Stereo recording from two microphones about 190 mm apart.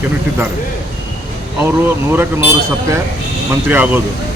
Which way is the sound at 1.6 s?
10° right (ahead or behind).